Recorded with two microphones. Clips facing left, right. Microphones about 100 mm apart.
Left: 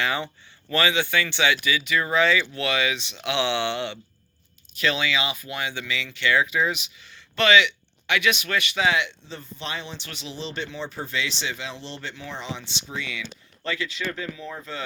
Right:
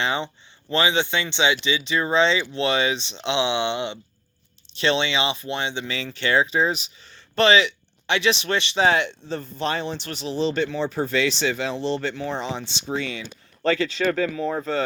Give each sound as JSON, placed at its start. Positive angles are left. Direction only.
{"t": 0.0, "sound": "speech", "side_deg": -20}
{"t": 11.1, "sound": "speech", "side_deg": -40}
{"t": 14.0, "sound": "speech", "side_deg": -55}